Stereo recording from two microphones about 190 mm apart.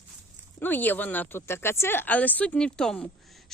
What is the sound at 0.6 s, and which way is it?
Speech, 10° left (ahead or behind).